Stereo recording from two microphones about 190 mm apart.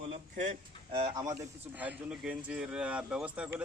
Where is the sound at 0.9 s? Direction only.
25° right (ahead or behind).